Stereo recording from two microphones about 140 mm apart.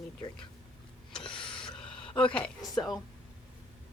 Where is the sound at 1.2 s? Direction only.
35° left (ahead or behind).